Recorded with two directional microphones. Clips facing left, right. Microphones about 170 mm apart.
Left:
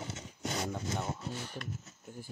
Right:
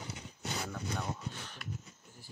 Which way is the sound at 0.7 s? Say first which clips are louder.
Left 2 dB; 25° left (ahead or behind).